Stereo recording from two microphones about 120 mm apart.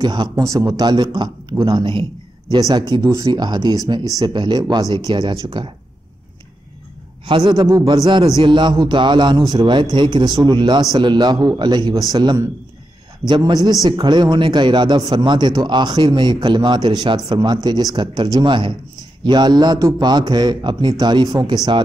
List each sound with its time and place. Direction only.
0.0 s a man's voice: 35° right (ahead or behind)
2.9 s a man's voice: 30° right (ahead or behind)
7.2 s a man's voice: 40° right (ahead or behind)